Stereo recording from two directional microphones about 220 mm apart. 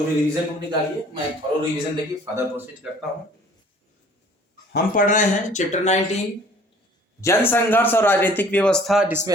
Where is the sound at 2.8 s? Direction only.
5° right (ahead or behind).